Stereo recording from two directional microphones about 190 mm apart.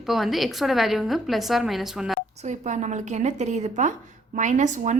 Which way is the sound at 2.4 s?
40° right (ahead or behind).